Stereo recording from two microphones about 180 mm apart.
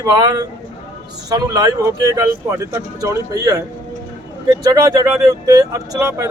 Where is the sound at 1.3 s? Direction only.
20° right (ahead or behind).